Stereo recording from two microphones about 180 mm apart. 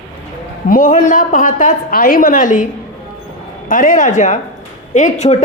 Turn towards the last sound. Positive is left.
turn(degrees=40)  # may be behind; listen again after turning